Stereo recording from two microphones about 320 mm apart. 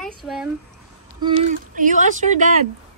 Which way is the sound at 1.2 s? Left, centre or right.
Right.